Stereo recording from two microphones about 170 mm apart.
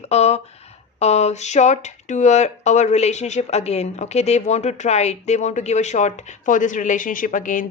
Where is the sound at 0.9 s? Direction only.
40° left (ahead or behind).